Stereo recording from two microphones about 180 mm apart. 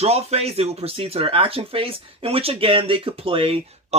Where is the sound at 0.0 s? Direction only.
35° right (ahead or behind).